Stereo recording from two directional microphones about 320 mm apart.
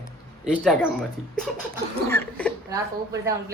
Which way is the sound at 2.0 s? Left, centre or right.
Centre.